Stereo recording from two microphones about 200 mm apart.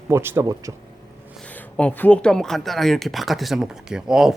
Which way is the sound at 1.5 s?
5° left (ahead or behind).